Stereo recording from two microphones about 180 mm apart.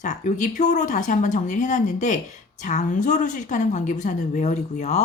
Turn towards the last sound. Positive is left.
turn(degrees=40)  # may be behind; listen again after turning